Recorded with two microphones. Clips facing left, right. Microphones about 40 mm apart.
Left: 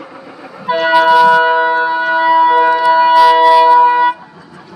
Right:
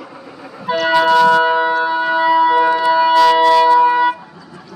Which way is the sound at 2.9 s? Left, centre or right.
Centre.